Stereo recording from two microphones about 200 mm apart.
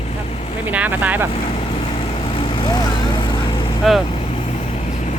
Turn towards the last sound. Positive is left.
turn(degrees=0)  # may be behind; listen again after turning